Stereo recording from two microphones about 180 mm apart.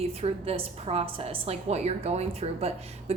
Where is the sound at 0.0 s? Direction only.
35° right (ahead or behind).